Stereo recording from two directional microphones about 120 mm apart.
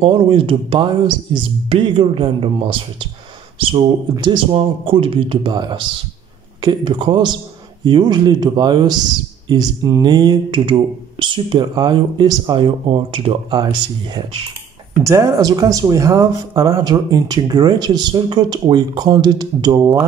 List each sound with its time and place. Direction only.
0.0 s speech: 45° right (ahead or behind)
15.0 s speech: 25° right (ahead or behind)